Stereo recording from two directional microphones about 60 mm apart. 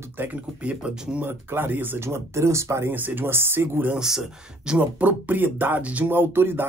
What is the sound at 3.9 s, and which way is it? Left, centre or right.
Speech, centre.